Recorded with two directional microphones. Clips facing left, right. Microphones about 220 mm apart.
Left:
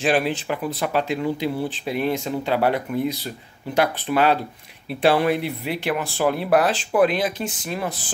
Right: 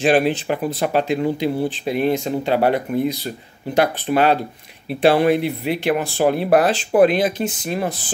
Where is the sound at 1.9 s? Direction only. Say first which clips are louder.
Right 3 dB; 45° right (ahead or behind).